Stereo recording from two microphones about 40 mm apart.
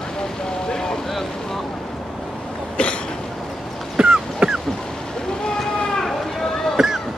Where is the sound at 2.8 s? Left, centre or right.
Left.